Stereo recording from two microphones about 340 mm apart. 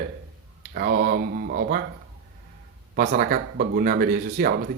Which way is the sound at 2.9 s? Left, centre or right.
Right.